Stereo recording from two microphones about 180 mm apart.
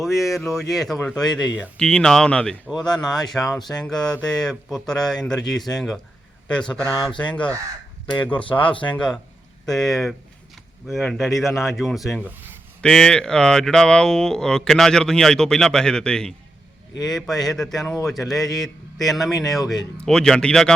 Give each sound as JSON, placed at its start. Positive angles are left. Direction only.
{"t": 0.0, "sound": "speech", "side_deg": 0}
{"t": 6.9, "sound": "speech", "side_deg": 25}
{"t": 8.3, "sound": "speech", "side_deg": 10}
{"t": 8.7, "sound": "speech", "side_deg": 25}
{"t": 9.0, "sound": "speech", "side_deg": 5}